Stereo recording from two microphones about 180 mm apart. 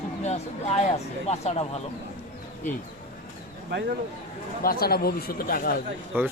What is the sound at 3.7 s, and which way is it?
Speech, 65° right (ahead or behind).